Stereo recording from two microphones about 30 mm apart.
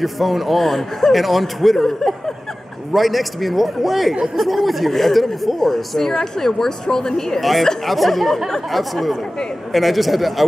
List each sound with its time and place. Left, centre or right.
0.0 s a woman's voice: centre
1.8 s a woman's voice: centre
2.9 s speech: centre
5.6 s a woman's voice: centre
7.3 s speech: centre